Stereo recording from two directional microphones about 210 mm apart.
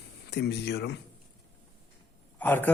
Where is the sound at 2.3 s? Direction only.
10° left (ahead or behind).